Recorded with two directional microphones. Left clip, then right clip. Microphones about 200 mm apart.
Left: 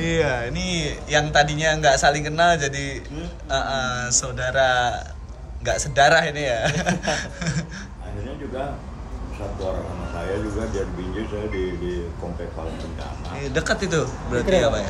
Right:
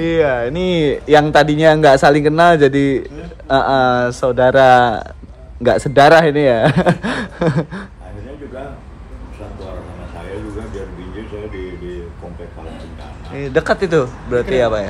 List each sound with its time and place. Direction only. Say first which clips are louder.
0.0 s speech: right 7 dB; centre (ahead or behind)
0.6 s a man's voice: right 11 dB; 20° right (ahead or behind)
6.2 s speech: right 10 dB; 20° right (ahead or behind)
13.3 s a man's voice: right 8 dB; 25° right (ahead or behind)